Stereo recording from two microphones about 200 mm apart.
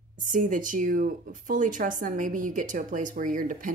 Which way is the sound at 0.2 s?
40° right (ahead or behind).